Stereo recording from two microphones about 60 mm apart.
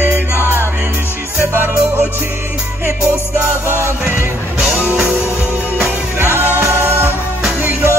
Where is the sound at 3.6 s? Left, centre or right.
Right.